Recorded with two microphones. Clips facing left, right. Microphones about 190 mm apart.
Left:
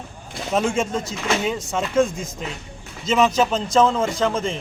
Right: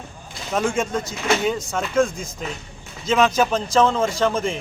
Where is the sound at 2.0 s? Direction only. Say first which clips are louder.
Even; 20° left (ahead or behind).